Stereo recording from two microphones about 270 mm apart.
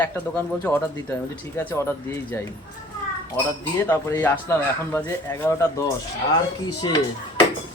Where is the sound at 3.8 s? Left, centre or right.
Centre.